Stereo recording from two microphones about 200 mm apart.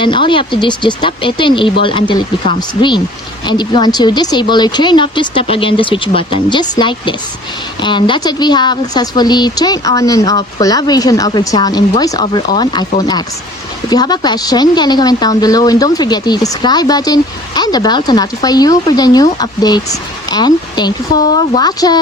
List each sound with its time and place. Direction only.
0.0 s speech: 25° left (ahead or behind)